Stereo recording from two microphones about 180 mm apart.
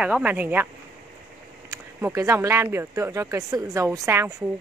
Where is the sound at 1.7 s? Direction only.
15° right (ahead or behind).